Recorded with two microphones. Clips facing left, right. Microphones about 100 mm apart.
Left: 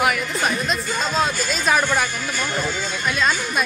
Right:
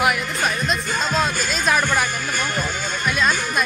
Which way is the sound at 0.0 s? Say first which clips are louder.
Even; centre (ahead or behind).